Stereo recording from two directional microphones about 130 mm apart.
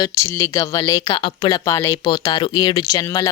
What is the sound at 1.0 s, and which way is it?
Speech, 40° left (ahead or behind).